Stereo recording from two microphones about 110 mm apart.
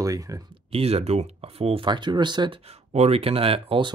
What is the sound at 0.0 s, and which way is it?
Speech, 30° right (ahead or behind).